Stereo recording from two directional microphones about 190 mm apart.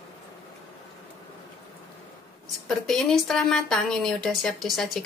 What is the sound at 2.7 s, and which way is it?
Speech, centre (ahead or behind).